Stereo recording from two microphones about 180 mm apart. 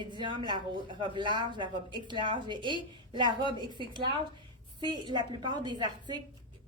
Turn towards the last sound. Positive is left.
turn(degrees=-25)  # may be behind; listen again after turning